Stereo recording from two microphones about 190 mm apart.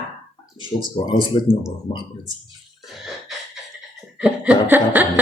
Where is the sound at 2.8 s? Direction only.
Centre (ahead or behind).